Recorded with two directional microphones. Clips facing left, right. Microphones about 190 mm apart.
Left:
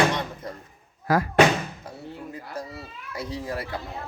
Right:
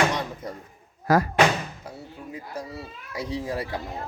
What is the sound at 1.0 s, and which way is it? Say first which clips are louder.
Speech: right 2 dB; 40° right (ahead or behind).